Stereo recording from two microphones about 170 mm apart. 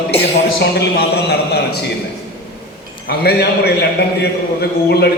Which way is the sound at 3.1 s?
65° left (ahead or behind).